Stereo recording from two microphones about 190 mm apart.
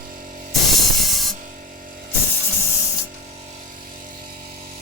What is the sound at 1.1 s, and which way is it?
Music, centre (ahead or behind).